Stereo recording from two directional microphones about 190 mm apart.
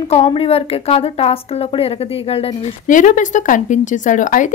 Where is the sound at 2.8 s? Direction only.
45° left (ahead or behind).